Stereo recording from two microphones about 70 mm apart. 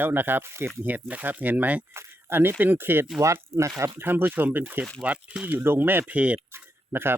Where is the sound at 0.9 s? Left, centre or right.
Right.